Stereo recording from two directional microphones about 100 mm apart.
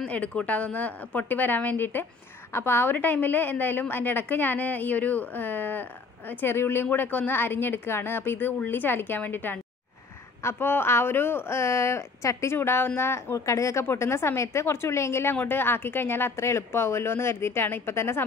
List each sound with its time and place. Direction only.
0.0 s a woman's voice: 10° left (ahead or behind)